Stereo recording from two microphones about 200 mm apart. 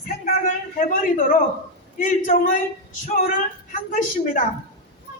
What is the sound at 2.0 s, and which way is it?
Speech, 40° left (ahead or behind).